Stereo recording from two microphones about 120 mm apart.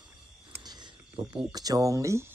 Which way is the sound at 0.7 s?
40° right (ahead or behind).